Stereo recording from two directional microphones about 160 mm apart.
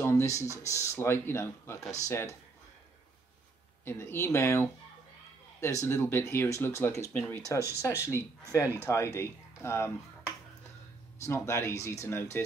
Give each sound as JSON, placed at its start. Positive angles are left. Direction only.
{"t": 0.0, "sound": "speech", "side_deg": 15}
{"t": 3.8, "sound": "speech", "side_deg": 15}
{"t": 11.1, "sound": "speech", "side_deg": 15}